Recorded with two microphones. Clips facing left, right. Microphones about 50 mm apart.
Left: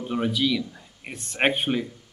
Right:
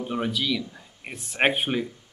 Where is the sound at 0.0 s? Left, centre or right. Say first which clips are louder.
Left 3 dB; centre.